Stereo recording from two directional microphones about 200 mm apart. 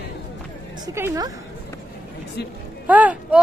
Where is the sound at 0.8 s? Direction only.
15° right (ahead or behind).